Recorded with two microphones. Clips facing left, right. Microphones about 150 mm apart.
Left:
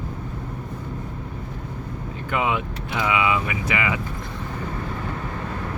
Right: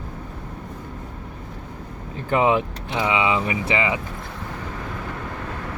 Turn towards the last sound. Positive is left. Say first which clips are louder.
# right 2 dB
turn(degrees=-25)  # may be behind; listen again after turning